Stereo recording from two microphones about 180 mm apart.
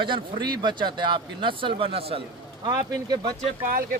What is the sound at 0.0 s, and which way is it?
Speech, 25° right (ahead or behind).